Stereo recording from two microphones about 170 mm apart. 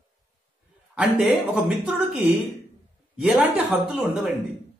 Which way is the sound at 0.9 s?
5° right (ahead or behind).